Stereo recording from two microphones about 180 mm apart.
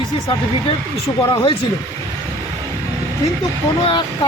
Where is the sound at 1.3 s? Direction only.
25° left (ahead or behind).